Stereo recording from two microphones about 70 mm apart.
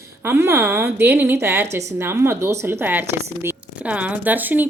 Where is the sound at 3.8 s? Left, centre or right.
Centre.